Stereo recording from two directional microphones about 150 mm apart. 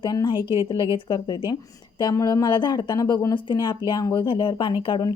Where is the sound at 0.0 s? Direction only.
30° left (ahead or behind).